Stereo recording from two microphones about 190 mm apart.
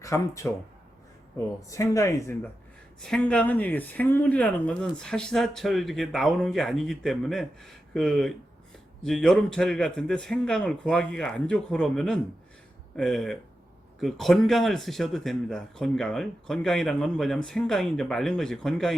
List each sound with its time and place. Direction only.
0.0 s speech: 15° left (ahead or behind)
1.7 s speech: 15° left (ahead or behind)
3.0 s speech: 5° left (ahead or behind)